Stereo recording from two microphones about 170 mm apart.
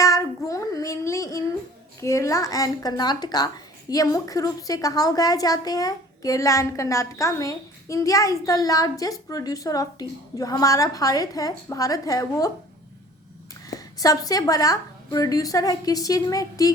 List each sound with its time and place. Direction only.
0.0 s child singing: 20° left (ahead or behind)
2.0 s a woman's voice: 20° left (ahead or behind)
13.7 s a woman's voice: 20° left (ahead or behind)